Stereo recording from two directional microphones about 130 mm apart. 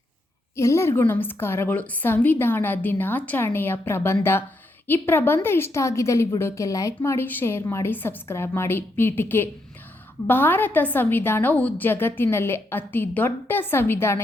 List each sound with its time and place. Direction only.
0.5 s a woman's voice: 20° left (ahead or behind)